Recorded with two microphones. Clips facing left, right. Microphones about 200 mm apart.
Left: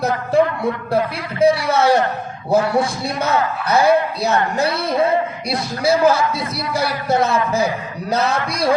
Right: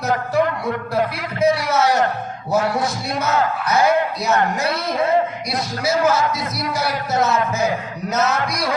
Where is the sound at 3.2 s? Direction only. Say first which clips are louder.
Left 1 dB; 30° left (ahead or behind).